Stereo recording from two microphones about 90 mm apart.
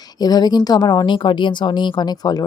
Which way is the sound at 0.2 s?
50° left (ahead or behind).